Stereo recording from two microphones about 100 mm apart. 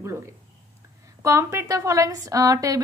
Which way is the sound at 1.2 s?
25° right (ahead or behind).